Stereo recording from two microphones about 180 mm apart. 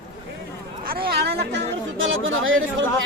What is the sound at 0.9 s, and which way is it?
Speech, 60° right (ahead or behind).